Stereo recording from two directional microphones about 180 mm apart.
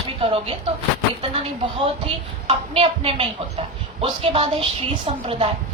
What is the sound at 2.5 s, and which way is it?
A woman's voice, 30° right (ahead or behind).